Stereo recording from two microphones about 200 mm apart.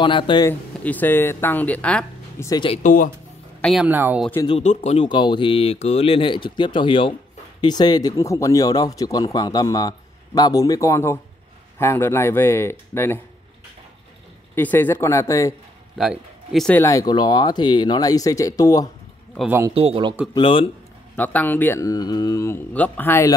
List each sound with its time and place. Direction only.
0.0 s speech: 25° left (ahead or behind)
0.5 s speech: 10° left (ahead or behind)
2.5 s speech: 25° left (ahead or behind)
2.8 s speech: 45° left (ahead or behind)
3.6 s speech: 5° right (ahead or behind)
4.5 s speech: 30° left (ahead or behind); by 13.2 s 10° left (ahead or behind)
14.5 s speech: 10° left (ahead or behind)
16.0 s speech: centre (ahead or behind); by 18.9 s 15° left (ahead or behind)
19.3 s speech: 5° right (ahead or behind)
19.7 s speech: 30° right (ahead or behind)
20.3 s speech: 25° left (ahead or behind)
21.2 s speech: 10° left (ahead or behind)